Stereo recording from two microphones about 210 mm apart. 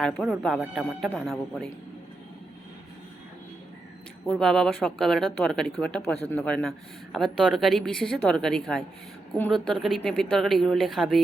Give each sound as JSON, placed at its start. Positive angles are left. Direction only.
{"t": 0.0, "sound": "a woman's voice", "side_deg": 5}
{"t": 4.3, "sound": "a woman's voice", "side_deg": 5}